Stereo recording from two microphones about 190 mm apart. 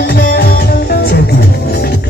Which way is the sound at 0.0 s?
50° left (ahead or behind).